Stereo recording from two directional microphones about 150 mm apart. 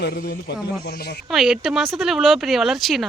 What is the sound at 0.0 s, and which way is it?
Speech, 85° left.